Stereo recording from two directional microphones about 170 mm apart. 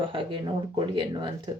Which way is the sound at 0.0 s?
30° right (ahead or behind).